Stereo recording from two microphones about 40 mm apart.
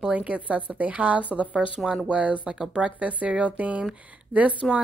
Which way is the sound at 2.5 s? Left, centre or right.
Centre.